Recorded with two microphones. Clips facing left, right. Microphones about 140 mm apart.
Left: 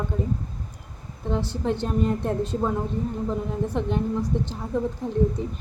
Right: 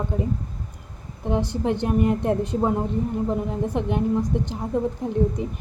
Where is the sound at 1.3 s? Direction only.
15° right (ahead or behind).